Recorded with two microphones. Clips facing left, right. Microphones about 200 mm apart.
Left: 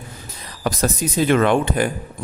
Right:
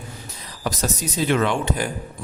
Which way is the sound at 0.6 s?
55° left (ahead or behind).